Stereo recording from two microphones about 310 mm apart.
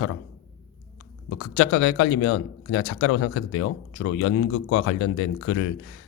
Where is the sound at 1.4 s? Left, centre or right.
Left.